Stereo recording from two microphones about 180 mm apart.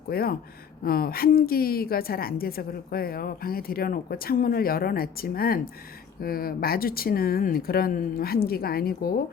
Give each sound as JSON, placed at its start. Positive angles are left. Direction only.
{"t": 0.1, "sound": "a woman's voice", "side_deg": 55}